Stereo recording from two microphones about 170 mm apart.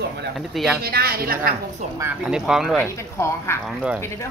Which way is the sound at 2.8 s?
15° left (ahead or behind).